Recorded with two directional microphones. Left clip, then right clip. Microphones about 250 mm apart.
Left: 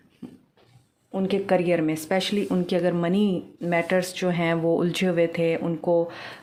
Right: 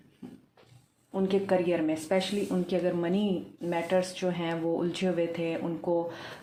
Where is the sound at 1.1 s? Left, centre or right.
Left.